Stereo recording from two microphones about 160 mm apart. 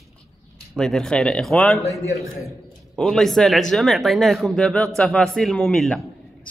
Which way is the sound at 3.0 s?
Centre (ahead or behind).